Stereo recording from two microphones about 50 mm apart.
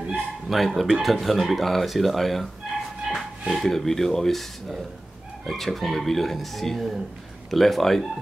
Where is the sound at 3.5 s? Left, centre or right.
Centre.